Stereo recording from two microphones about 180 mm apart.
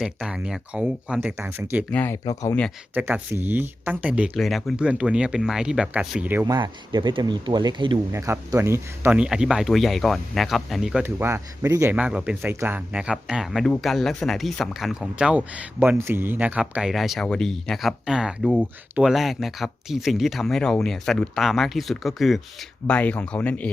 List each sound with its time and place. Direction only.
0.0 s speech: 5° right (ahead or behind)
1.9 s speech: 10° left (ahead or behind)
2.9 s speech: 10° right (ahead or behind)
6.4 s speech: 25° right (ahead or behind); by 23.7 s 5° left (ahead or behind)